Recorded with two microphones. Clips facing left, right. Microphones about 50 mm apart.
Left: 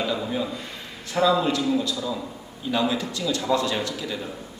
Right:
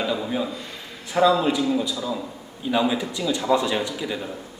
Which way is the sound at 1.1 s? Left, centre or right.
Centre.